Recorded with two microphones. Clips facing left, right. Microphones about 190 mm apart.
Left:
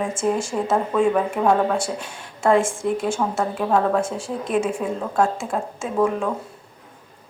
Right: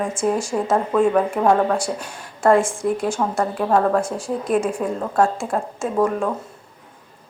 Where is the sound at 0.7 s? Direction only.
5° left (ahead or behind).